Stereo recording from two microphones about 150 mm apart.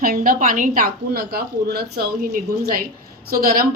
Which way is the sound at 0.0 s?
75° right (ahead or behind).